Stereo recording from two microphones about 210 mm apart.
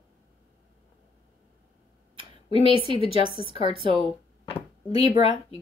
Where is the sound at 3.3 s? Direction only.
25° left (ahead or behind).